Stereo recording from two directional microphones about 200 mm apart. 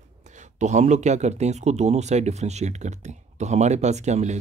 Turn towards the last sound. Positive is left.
turn(degrees=-35)  # may be behind; listen again after turning